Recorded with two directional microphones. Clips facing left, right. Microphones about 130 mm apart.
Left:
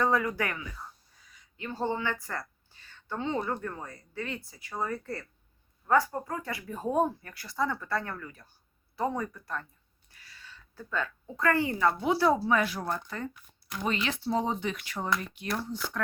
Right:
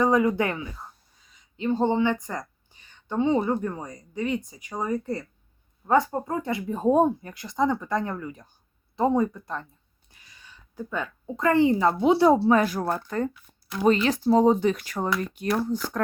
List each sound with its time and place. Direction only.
0.0 s speech: 20° right (ahead or behind)
5.8 s speech: 25° right (ahead or behind); by 16.0 s 45° right (ahead or behind)